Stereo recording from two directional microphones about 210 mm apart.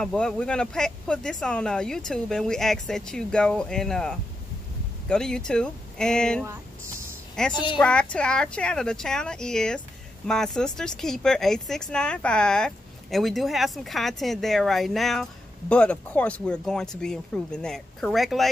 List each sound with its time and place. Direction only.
0.0 s speech: 5° left (ahead or behind)
7.5 s a woman's voice: 20° left (ahead or behind)
7.8 s speech: 5° left (ahead or behind)